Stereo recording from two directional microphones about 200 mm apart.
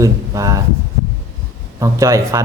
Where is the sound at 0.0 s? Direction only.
15° right (ahead or behind).